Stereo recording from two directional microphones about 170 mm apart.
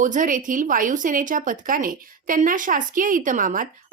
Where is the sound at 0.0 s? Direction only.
50° right (ahead or behind).